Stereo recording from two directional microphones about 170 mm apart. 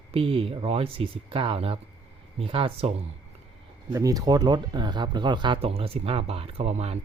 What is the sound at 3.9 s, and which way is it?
Speech, 20° right (ahead or behind).